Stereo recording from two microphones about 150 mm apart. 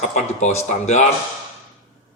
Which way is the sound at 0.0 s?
50° left (ahead or behind).